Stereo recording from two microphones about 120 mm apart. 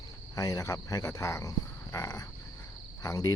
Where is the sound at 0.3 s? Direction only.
30° left (ahead or behind).